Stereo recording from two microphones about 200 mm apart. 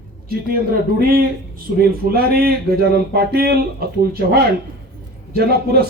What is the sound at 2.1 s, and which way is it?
Speech, 50° right (ahead or behind).